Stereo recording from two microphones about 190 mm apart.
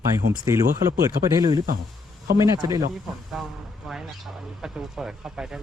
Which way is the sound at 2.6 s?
15° right (ahead or behind).